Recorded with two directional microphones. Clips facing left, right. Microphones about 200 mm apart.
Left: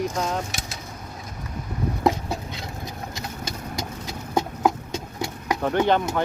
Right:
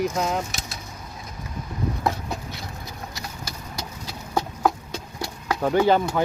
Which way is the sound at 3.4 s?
50° left (ahead or behind).